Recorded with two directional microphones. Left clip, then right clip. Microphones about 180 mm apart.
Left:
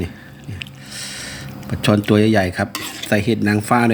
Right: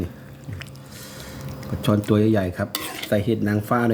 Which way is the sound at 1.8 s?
30° left (ahead or behind).